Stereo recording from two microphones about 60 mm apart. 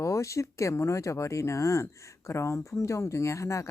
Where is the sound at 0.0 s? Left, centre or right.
Left.